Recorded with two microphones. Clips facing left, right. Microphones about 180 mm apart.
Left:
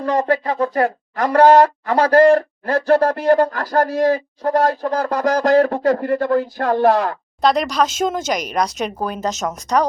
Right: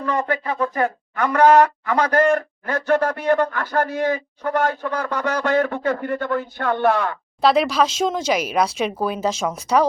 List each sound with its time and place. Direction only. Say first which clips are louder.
0.0 s speech: left 5 dB; 35° left (ahead or behind)
7.4 s speech: even; 5° right (ahead or behind)